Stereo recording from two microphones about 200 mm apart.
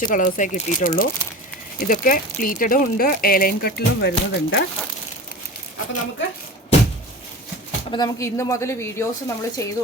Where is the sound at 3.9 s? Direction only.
60° left (ahead or behind).